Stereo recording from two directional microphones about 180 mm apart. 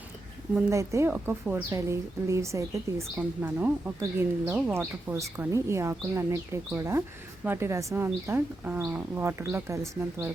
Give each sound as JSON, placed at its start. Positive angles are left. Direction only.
{"t": 0.5, "sound": "speech", "side_deg": -15}